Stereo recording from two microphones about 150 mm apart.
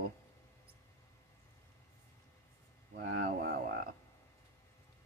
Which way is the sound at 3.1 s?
90° right.